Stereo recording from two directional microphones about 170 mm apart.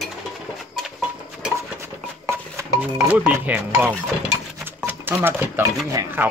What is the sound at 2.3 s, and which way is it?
Speech, 15° right (ahead or behind).